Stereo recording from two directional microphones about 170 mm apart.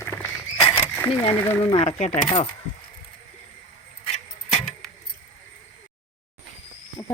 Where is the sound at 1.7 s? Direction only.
40° left (ahead or behind).